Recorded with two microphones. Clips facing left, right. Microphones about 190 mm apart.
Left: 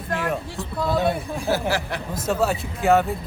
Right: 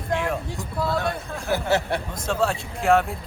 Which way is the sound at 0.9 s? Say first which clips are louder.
Left 6 dB; 20° left (ahead or behind).